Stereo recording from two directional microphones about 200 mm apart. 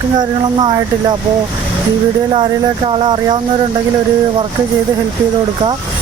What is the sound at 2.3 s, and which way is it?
Speech, 20° right (ahead or behind).